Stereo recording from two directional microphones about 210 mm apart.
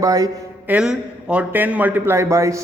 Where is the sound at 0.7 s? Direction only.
5° right (ahead or behind).